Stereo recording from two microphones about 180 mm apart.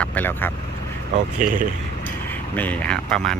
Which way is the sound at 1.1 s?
45° right (ahead or behind).